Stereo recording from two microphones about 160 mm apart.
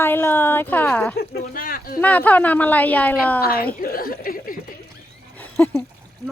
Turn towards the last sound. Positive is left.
turn(degrees=10)  # may be behind; listen again after turning